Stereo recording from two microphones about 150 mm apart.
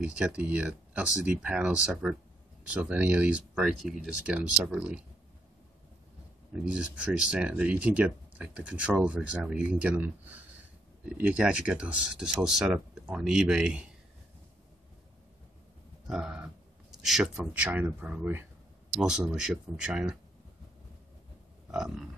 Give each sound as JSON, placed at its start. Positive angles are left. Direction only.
{"t": 0.0, "sound": "speech", "side_deg": -5}
{"t": 6.6, "sound": "speech", "side_deg": -5}
{"t": 16.1, "sound": "speech", "side_deg": -5}
{"t": 21.7, "sound": "speech", "side_deg": -5}